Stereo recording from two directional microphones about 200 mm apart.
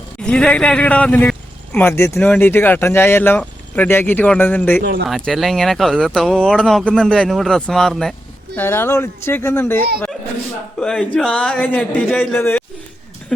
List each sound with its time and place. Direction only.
0.2 s speech: 5° left (ahead or behind)
4.8 s speech: 55° right (ahead or behind)
5.0 s speech: centre (ahead or behind)